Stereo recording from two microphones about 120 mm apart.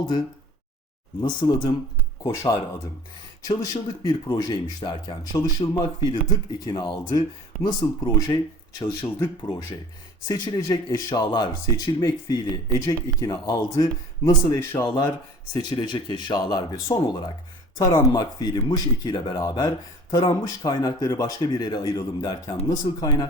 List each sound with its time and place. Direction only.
1.2 s speech: 40° left (ahead or behind)
2.2 s speech: 25° left (ahead or behind)